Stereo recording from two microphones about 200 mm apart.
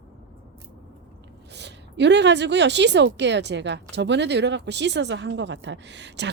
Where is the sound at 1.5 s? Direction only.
60° right (ahead or behind).